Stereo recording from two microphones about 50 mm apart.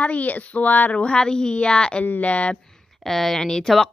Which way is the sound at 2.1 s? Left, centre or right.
Left.